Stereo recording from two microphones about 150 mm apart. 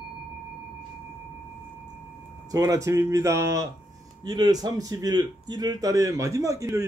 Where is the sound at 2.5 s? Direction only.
25° right (ahead or behind).